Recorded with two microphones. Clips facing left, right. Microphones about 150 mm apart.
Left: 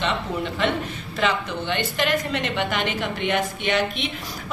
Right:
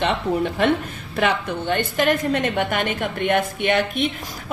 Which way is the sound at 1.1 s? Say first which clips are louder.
Right 3 dB; 55° right (ahead or behind).